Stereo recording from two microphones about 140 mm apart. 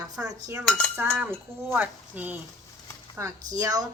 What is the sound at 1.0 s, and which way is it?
Speech, 15° right (ahead or behind).